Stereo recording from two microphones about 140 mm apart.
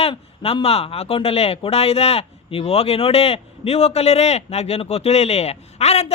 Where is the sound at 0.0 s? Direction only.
45° left (ahead or behind).